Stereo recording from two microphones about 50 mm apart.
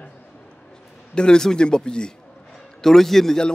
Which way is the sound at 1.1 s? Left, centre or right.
Centre.